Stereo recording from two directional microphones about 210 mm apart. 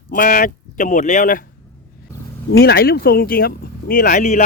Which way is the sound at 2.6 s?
45° left (ahead or behind).